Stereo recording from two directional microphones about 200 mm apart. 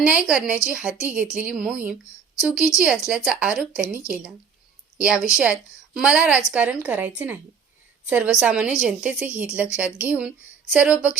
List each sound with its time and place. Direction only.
0.0 s a woman's voice: 5° right (ahead or behind)
8.1 s speech: 5° right (ahead or behind)